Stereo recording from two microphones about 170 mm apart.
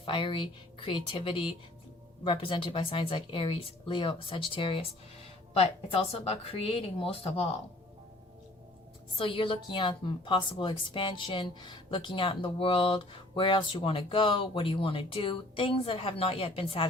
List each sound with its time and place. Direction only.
0.0 s a woman's voice: 30° left (ahead or behind)
9.1 s a woman's voice: 30° left (ahead or behind)